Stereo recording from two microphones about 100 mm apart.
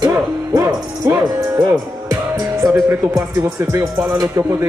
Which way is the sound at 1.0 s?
20° right (ahead or behind).